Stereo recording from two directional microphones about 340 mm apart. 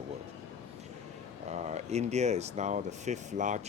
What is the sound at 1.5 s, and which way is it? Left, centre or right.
Speech, centre.